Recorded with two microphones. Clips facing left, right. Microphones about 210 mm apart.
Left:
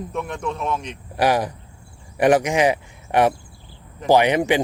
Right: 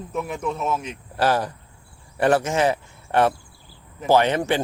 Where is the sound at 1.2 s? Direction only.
15° left (ahead or behind).